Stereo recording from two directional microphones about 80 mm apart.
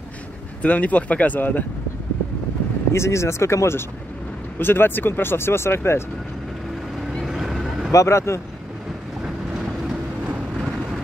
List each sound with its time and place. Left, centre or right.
0.6 s speech: centre
2.9 s speech: left
7.1 s vehicle: centre
7.9 s speech: left